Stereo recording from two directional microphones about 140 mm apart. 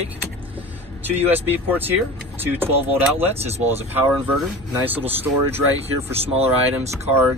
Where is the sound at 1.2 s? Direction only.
15° right (ahead or behind).